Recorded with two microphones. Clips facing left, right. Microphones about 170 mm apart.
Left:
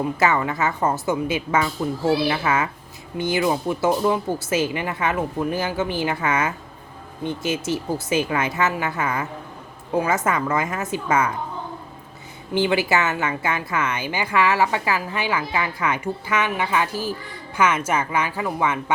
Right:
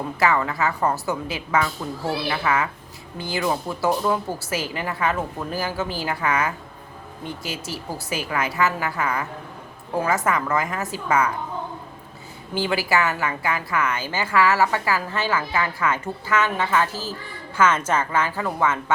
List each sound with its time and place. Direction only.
0.2 s speech: 25° left (ahead or behind)
10.2 s speech: 20° left (ahead or behind)
12.5 s a woman's voice: 20° left (ahead or behind)